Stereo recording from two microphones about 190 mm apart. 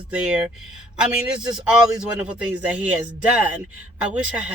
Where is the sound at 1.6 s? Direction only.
5° right (ahead or behind).